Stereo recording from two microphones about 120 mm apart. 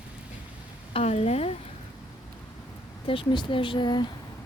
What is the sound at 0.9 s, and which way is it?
Speech, 60° left (ahead or behind).